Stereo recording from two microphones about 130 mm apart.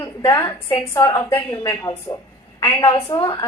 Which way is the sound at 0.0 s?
25° left (ahead or behind).